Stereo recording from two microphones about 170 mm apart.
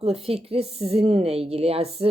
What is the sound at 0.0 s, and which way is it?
A woman's voice, 35° right (ahead or behind).